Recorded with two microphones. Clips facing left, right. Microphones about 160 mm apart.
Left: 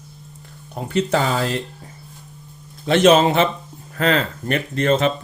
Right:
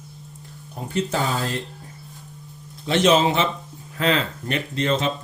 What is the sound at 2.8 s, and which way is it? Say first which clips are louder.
A man's voice: left 4 dB; 55° left (ahead or behind).